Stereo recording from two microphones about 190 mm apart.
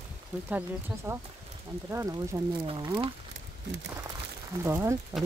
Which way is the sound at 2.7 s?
25° right (ahead or behind).